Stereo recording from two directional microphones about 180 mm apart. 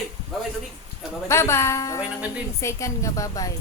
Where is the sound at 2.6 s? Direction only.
15° left (ahead or behind).